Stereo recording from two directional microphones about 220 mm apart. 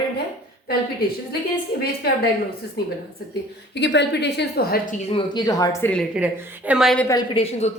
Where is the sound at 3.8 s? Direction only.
50° left (ahead or behind).